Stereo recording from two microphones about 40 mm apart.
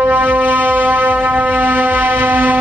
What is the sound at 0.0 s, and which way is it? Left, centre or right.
Music, right.